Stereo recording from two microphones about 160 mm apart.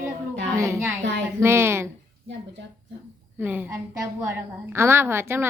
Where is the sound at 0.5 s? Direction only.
15° right (ahead or behind).